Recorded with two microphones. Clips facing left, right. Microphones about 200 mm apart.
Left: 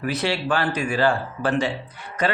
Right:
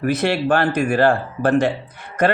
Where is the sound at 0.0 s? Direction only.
50° right (ahead or behind).